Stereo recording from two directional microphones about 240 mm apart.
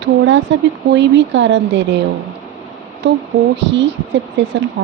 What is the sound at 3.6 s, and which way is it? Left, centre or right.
Speech, right.